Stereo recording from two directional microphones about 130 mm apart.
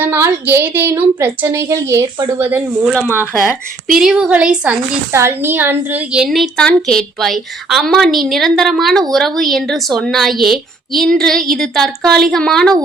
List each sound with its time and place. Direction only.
0.0 s a woman's voice: 15° right (ahead or behind)
3.9 s a woman's voice: 5° right (ahead or behind)
5.1 s a woman's voice: 20° right (ahead or behind); by 12.7 s 5° left (ahead or behind)